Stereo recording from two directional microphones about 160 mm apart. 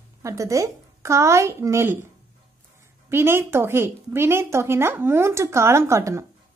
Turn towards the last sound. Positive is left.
turn(degrees=-20)  # may be behind; listen again after turning